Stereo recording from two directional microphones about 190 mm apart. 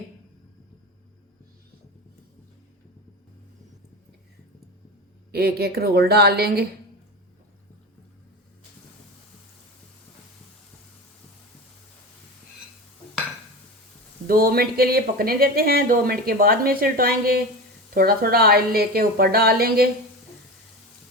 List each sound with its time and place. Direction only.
5.3 s a woman's voice: 55° right (ahead or behind)
14.3 s speech: 50° right (ahead or behind)